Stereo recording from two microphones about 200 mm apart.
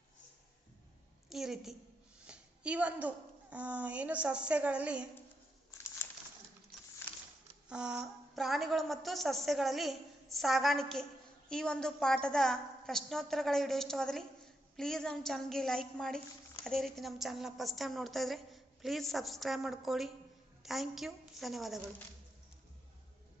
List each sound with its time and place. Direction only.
1.3 s a woman's voice: centre (ahead or behind)
7.7 s a woman's voice: 5° right (ahead or behind)